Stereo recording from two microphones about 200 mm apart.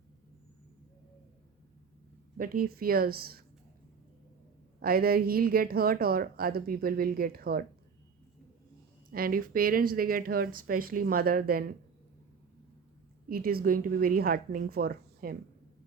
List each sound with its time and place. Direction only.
2.4 s a woman's voice: 45° right (ahead or behind)
4.8 s a woman's voice: 50° right (ahead or behind)
9.1 s a woman's voice: 45° right (ahead or behind)
13.2 s a woman's voice: 50° right (ahead or behind)